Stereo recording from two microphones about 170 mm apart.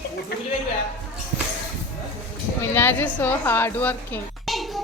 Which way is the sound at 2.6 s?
15° left (ahead or behind).